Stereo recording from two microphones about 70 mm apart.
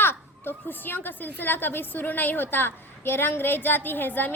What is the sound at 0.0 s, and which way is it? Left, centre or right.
Speech, left.